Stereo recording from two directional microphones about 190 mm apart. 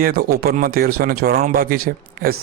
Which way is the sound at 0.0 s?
50° right (ahead or behind).